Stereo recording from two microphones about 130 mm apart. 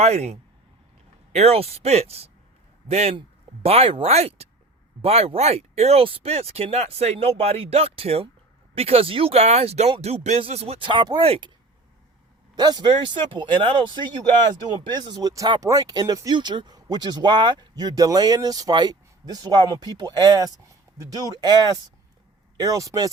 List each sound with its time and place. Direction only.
0.0 s speech: 55° right (ahead or behind)
12.5 s speech: 35° right (ahead or behind)